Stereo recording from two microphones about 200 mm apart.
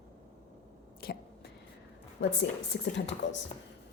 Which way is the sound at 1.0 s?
50° left (ahead or behind).